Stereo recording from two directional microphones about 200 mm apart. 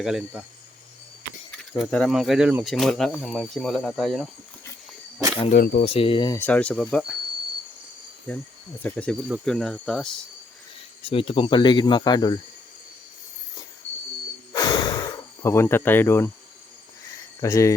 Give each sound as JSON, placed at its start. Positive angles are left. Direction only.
{"t": 0.0, "sound": "speech", "side_deg": 0}
{"t": 1.8, "sound": "speech", "side_deg": 5}
{"t": 5.5, "sound": "speech", "side_deg": 35}
{"t": 6.4, "sound": "speech", "side_deg": 5}
{"t": 8.3, "sound": "speech", "side_deg": 5}
{"t": 11.0, "sound": "speech", "side_deg": 30}
{"t": 14.5, "sound": "insect", "side_deg": 20}
{"t": 17.4, "sound": "speech", "side_deg": 15}